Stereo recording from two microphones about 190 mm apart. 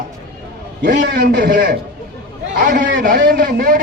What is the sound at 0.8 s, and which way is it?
Speech, 60° right (ahead or behind).